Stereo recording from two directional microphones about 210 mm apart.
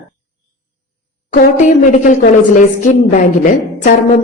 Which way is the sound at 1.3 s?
40° left (ahead or behind).